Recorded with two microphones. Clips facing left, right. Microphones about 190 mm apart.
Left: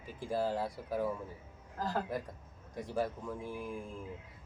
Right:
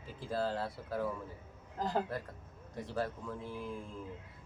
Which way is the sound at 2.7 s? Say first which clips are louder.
Left 2 dB; 15° left (ahead or behind).